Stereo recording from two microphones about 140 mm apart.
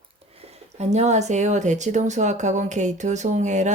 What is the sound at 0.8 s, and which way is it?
Speech, 55° right (ahead or behind).